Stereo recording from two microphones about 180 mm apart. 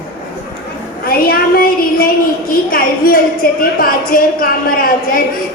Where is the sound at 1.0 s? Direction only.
55° left (ahead or behind).